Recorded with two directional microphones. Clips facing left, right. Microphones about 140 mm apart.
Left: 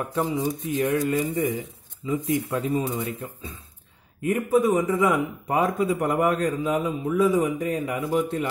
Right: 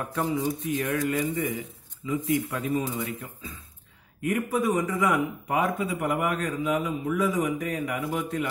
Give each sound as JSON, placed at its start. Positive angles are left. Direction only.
{"t": 0.1, "sound": "a man's voice", "side_deg": 25}